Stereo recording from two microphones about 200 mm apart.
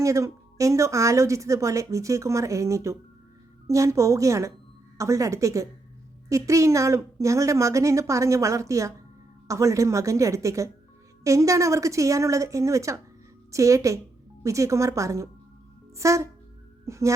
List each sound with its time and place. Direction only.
0.0 s a woman's voice: 15° right (ahead or behind)
16.8 s music: 15° right (ahead or behind)